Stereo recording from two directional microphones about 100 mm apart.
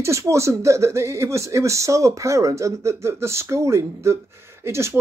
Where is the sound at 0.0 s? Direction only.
30° right (ahead or behind).